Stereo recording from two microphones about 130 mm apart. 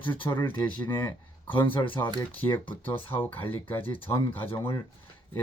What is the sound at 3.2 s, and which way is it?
Speech, 15° left (ahead or behind).